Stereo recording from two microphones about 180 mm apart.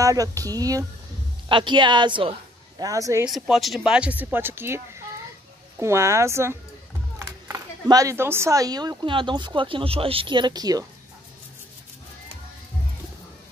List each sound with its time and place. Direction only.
0.0 s speech: 20° right (ahead or behind)
3.3 s speech: centre (ahead or behind); by 10.9 s 20° right (ahead or behind)